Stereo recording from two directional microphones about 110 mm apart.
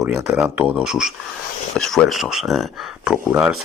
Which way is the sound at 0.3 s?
15° right (ahead or behind).